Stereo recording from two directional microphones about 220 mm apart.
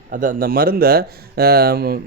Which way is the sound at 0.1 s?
40° right (ahead or behind).